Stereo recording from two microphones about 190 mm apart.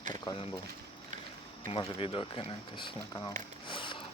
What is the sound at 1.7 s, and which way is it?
Speech, 30° left (ahead or behind).